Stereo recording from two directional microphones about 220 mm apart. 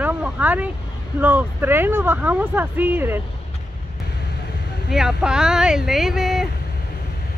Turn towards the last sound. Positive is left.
turn(degrees=0)  # may be behind; listen again after turning